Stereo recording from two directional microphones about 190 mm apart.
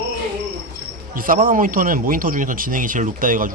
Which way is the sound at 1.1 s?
45° right (ahead or behind).